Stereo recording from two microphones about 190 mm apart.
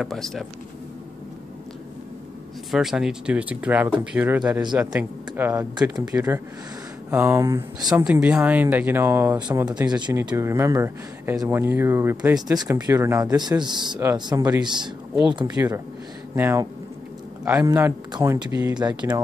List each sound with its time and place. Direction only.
0.0 s speech: centre (ahead or behind)
2.7 s speech: centre (ahead or behind)
7.9 s speech: 5° right (ahead or behind); by 19.2 s 20° right (ahead or behind)